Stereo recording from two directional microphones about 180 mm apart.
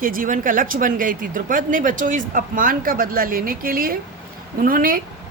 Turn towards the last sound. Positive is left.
turn(degrees=-50)  # may be behind; listen again after turning